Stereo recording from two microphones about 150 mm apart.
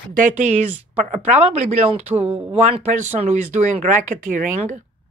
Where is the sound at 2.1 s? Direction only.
10° right (ahead or behind).